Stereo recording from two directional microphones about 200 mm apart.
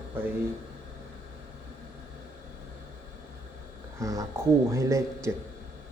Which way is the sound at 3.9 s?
15° right (ahead or behind).